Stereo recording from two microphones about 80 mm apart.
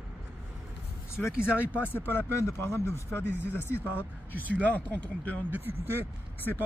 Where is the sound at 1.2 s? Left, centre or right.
Left.